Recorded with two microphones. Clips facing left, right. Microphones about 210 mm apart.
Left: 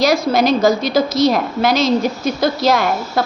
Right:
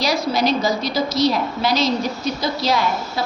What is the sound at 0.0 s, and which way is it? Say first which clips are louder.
A woman's voice: left 5 dB; 50° left (ahead or behind).